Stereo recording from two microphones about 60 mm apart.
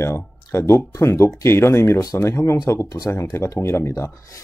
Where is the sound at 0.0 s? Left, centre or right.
Left.